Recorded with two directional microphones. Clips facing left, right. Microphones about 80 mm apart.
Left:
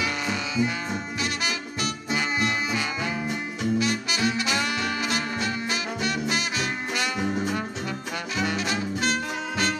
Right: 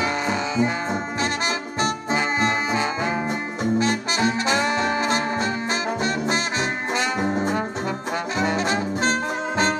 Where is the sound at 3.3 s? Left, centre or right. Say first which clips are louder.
Right 3 dB; right.